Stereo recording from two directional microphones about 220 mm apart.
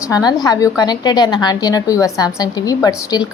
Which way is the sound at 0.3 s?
20° left (ahead or behind).